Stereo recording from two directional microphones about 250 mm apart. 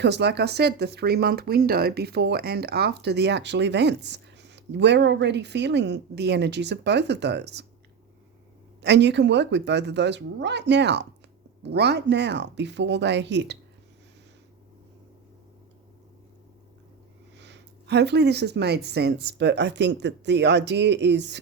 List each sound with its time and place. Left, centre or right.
0.0 s speech: right
8.8 s speech: right
17.3 s speech: right